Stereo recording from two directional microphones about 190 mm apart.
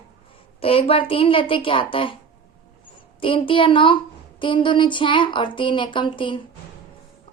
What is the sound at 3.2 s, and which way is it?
A woman's voice, 25° left (ahead or behind).